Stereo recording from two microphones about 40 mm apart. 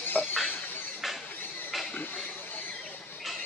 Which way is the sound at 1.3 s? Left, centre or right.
Left.